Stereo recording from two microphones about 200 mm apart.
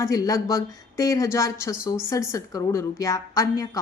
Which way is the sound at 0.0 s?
15° left (ahead or behind).